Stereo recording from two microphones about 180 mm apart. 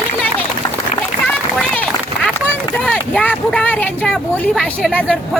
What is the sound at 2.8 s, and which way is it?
Speech, 5° left (ahead or behind).